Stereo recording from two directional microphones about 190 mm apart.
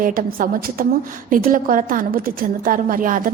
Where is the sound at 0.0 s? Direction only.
45° right (ahead or behind).